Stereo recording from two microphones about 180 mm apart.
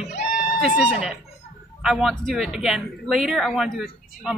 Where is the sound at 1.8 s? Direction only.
Centre (ahead or behind).